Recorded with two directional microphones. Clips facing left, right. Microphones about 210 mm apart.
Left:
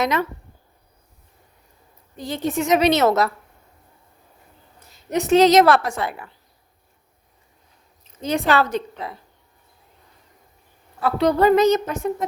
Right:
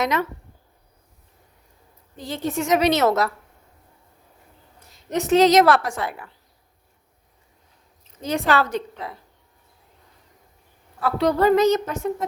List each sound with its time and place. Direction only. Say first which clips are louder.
0.0 s speech: left 1 dB; 30° left (ahead or behind)
2.1 s a woman's voice: left 2 dB; 15° left (ahead or behind)
4.8 s a sound: left 1 dB; centre (ahead or behind)
5.3 s a woman's voice: left 1 dB; 25° left (ahead or behind)
8.2 s a woman's voice: left 2 dB; 20° left (ahead or behind)
11.0 s a woman's voice: left 2 dB; 20° left (ahead or behind)